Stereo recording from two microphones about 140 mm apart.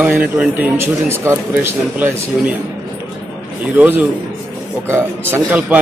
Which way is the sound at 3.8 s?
10° right (ahead or behind).